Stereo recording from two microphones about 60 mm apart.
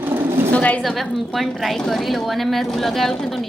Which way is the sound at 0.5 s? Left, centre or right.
Left.